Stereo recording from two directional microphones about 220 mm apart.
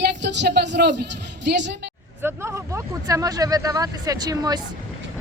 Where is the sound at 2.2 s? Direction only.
10° right (ahead or behind).